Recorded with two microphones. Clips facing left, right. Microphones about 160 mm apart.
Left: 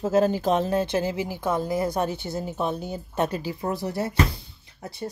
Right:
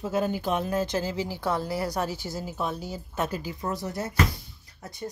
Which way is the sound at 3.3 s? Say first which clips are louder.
Left 3 dB; 25° left (ahead or behind).